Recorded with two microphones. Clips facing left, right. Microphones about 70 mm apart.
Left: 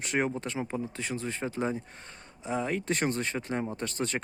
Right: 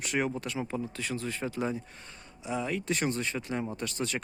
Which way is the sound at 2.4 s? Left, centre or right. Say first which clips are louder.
Left 1 dB; left.